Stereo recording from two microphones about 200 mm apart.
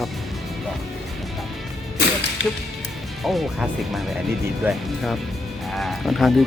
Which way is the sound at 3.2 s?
Centre (ahead or behind).